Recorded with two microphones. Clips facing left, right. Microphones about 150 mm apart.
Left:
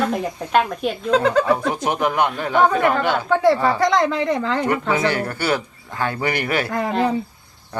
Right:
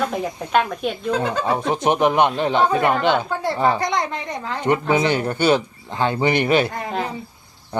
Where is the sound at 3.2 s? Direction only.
80° left.